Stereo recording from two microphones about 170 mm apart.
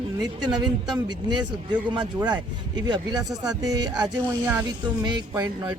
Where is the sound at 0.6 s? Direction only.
25° right (ahead or behind).